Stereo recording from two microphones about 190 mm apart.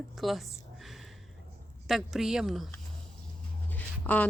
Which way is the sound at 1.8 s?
Centre (ahead or behind).